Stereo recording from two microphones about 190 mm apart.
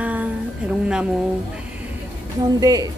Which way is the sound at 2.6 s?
20° right (ahead or behind).